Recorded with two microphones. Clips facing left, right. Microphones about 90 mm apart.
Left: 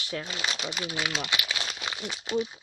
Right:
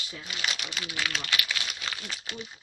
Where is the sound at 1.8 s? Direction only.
20° left (ahead or behind).